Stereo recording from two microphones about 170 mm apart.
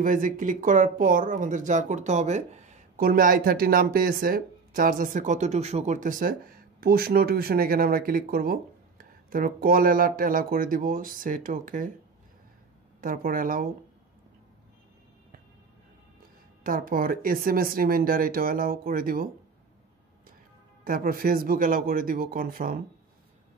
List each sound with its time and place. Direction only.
0.0 s speech: 50° right (ahead or behind)
13.0 s speech: 55° right (ahead or behind)
16.6 s speech: 55° right (ahead or behind)
20.8 s speech: 60° right (ahead or behind)